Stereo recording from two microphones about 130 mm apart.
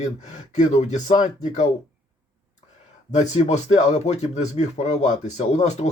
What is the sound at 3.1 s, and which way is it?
Speech, 60° left (ahead or behind).